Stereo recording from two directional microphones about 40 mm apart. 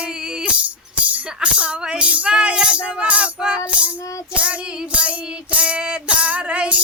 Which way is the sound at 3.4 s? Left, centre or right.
Right.